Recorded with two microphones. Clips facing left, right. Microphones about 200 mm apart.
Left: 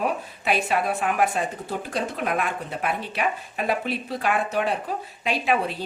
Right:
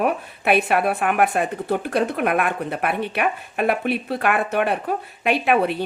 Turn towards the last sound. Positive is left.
turn(degrees=-65)  # may be behind; listen again after turning